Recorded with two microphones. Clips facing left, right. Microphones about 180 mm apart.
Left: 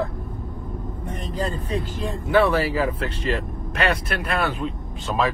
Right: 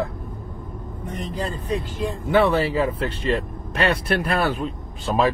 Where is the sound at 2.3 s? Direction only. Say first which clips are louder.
Even; 25° right (ahead or behind).